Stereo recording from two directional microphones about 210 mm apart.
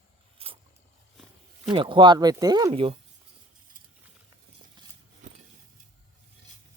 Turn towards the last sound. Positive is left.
turn(degrees=-35)  # may be behind; listen again after turning